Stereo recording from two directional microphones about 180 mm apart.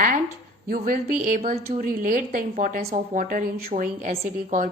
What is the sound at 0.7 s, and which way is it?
A woman's voice, 55° right (ahead or behind).